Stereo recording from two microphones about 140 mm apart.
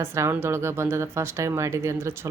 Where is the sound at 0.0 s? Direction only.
15° right (ahead or behind).